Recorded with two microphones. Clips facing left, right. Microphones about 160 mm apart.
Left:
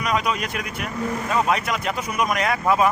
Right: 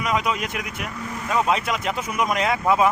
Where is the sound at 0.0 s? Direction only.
20° right (ahead or behind).